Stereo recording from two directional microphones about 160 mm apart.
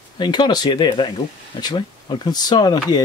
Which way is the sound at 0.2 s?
30° left (ahead or behind).